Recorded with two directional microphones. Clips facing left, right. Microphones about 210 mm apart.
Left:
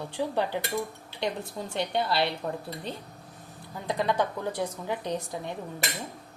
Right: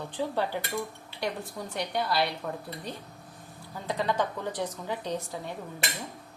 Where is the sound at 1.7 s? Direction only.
25° left (ahead or behind).